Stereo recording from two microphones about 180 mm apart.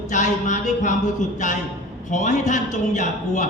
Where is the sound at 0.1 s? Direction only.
45° left (ahead or behind).